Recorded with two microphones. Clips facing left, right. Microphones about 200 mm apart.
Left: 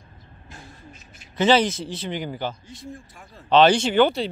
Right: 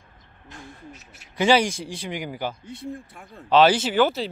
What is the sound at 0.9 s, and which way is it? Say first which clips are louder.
Speech: even; 75° right (ahead or behind).